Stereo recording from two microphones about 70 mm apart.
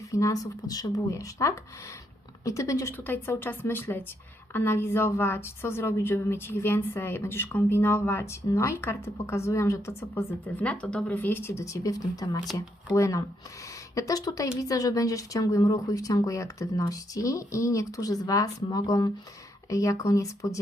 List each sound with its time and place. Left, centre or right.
0.1 s speech: left
1.1 s speech: left
3.1 s a woman's voice: left
10.4 s speech: centre
11.2 s speech: left
19.7 s speech: left